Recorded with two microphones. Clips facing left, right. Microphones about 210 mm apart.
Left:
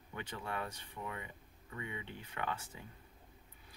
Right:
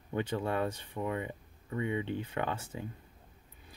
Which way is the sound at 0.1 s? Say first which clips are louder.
Right 10 dB; 30° right (ahead or behind).